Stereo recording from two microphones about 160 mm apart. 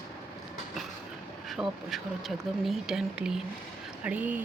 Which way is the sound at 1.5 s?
Centre (ahead or behind).